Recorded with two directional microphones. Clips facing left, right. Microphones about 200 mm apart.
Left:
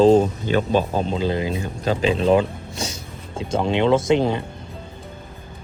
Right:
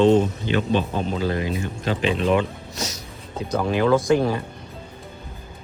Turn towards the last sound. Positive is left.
turn(degrees=25)  # may be behind; listen again after turning